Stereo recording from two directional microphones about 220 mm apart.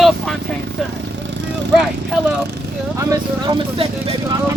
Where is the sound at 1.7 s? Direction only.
Centre (ahead or behind).